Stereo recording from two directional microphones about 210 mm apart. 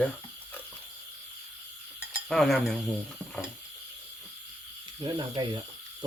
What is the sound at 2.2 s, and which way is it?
Speech, centre (ahead or behind).